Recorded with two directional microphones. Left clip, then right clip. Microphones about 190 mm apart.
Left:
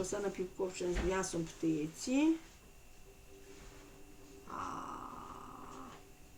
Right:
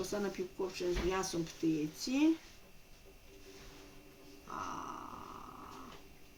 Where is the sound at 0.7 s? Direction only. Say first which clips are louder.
Right 2 dB; 20° right (ahead or behind).